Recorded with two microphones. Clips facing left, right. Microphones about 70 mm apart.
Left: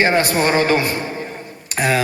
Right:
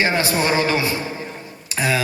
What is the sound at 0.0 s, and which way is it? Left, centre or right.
A man's voice, left.